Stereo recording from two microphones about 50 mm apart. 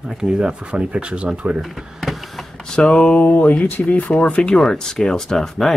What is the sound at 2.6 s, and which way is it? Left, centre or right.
Speech, centre.